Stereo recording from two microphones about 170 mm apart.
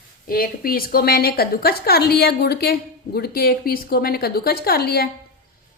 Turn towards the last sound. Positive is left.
turn(degrees=65)  # may be behind; listen again after turning